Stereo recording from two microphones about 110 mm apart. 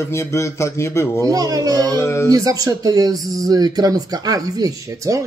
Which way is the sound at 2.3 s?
35° right (ahead or behind).